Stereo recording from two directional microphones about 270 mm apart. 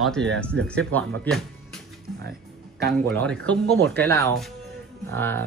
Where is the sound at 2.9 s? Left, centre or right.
Centre.